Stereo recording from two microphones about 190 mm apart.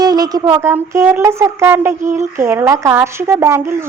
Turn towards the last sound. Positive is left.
turn(degrees=-15)  # may be behind; listen again after turning